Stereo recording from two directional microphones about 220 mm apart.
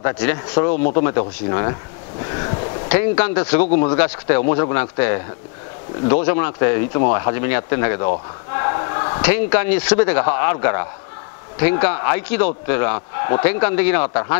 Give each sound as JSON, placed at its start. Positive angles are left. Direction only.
{"t": 0.0, "sound": "a man's voice", "side_deg": 10}
{"t": 2.2, "sound": "a sound", "side_deg": 20}
{"t": 3.8, "sound": "a man's voice", "side_deg": 10}